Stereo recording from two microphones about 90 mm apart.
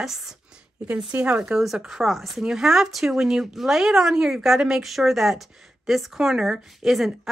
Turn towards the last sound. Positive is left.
turn(degrees=-5)  # may be behind; listen again after turning